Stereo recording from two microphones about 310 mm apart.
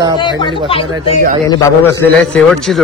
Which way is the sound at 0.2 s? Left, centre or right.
Centre.